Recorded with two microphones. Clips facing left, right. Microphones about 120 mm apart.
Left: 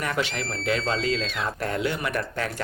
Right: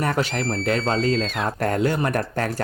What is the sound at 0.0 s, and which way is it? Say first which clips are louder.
Speech: right 5 dB; 40° right (ahead or behind).